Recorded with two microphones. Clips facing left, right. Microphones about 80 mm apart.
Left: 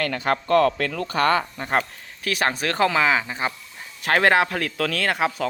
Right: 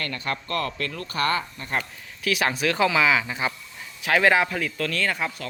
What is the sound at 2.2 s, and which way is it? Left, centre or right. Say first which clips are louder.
Speech: even; left.